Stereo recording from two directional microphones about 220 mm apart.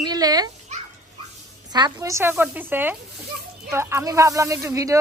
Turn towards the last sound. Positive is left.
turn(degrees=-15)  # may be behind; listen again after turning